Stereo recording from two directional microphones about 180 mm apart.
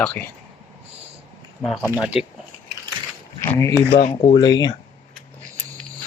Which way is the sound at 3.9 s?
35° left (ahead or behind).